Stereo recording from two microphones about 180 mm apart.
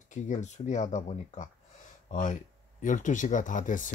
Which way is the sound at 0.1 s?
40° left (ahead or behind).